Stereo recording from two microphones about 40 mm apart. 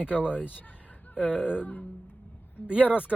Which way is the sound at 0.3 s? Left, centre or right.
Left.